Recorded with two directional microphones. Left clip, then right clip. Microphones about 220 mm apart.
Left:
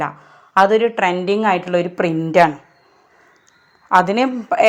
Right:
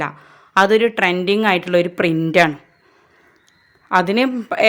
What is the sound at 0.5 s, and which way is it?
A woman's voice, 35° right (ahead or behind).